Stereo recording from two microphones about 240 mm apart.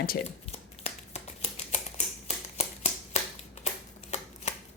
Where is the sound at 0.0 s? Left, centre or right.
Left.